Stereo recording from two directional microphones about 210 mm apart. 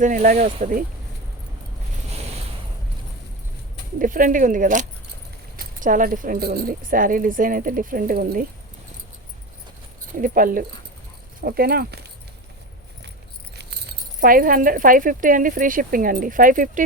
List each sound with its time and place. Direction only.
0.0 s speech: 35° right (ahead or behind)
2.0 s a sound: 30° right (ahead or behind)
3.9 s speech: 40° right (ahead or behind)
10.2 s speech: 40° right (ahead or behind)
14.2 s speech: 40° right (ahead or behind)